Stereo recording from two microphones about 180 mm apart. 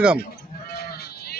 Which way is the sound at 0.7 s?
60° left (ahead or behind).